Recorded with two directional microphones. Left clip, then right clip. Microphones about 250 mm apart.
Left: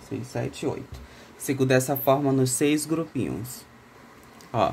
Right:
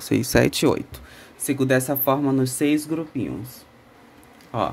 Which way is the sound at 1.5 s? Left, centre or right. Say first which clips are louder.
Right 2 dB; centre.